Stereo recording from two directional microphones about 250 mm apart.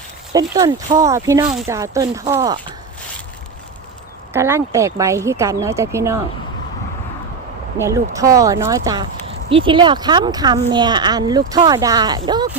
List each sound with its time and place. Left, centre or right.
0.3 s speech: centre
4.4 s speech: centre
7.9 s speech: centre